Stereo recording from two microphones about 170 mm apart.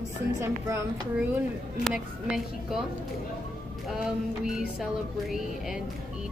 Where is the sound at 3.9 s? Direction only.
5° right (ahead or behind).